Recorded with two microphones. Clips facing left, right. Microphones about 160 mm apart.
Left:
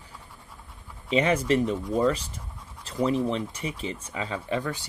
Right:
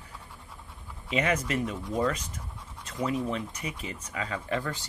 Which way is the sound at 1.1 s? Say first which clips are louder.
Left 5 dB; 30° left (ahead or behind).